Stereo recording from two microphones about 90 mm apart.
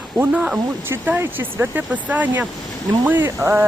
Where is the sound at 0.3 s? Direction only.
10° right (ahead or behind).